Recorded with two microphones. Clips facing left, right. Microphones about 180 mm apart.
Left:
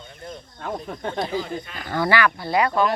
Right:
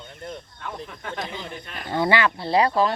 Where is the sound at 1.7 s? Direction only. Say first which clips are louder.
Right 1 dB; 25° right (ahead or behind).